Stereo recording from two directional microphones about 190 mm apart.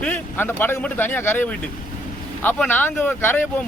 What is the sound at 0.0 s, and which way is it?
A man's voice, 10° left (ahead or behind).